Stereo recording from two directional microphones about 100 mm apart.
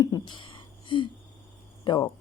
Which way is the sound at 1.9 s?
45° left (ahead or behind).